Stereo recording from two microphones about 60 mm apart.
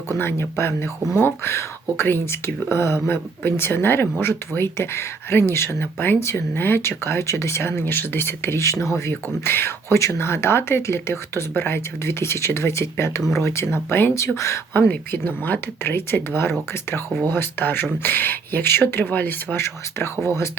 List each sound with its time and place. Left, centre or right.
0.2 s speech: left
14.3 s speech: left
14.7 s speech: left
19.5 s speech: left